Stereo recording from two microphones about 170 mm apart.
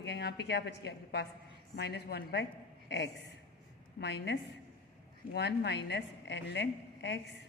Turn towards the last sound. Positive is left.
turn(degrees=90)